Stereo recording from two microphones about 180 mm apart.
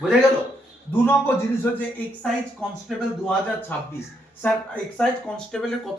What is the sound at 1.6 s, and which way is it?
Speech, 10° left (ahead or behind).